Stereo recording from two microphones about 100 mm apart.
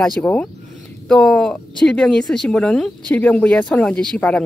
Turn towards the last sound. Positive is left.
turn(degrees=10)  # may be behind; listen again after turning